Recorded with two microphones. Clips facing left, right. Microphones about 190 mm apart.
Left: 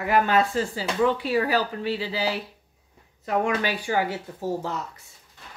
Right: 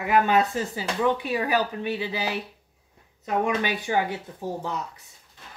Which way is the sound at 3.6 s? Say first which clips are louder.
Even; 20° right (ahead or behind).